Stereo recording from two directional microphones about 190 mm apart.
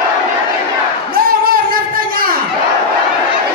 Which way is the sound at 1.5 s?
50° right (ahead or behind).